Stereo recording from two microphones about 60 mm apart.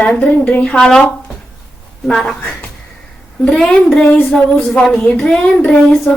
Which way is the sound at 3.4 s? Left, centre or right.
Centre.